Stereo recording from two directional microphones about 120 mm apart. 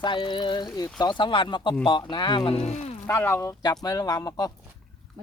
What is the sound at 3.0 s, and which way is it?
Speech, 20° left (ahead or behind).